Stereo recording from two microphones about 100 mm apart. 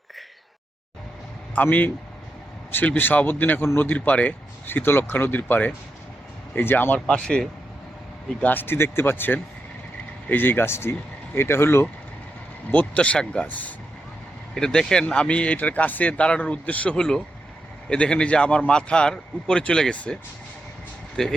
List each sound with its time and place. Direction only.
1.5 s speech: 15° left (ahead or behind)
12.7 s speech: 15° left (ahead or behind)
21.2 s speech: 5° left (ahead or behind)